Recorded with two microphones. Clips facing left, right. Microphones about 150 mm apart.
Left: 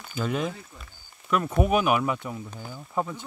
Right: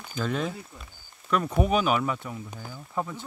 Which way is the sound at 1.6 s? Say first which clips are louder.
Left 2 dB; 10° left (ahead or behind).